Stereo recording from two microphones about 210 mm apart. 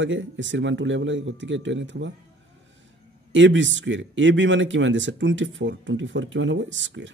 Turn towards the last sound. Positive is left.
turn(degrees=-60)  # may be behind; listen again after turning